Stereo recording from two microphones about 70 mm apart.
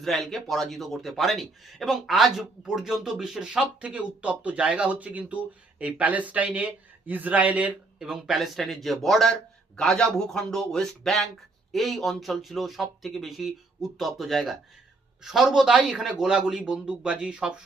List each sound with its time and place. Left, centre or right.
0.0 s speech: centre; by 7.7 s right
7.9 s a man's voice: centre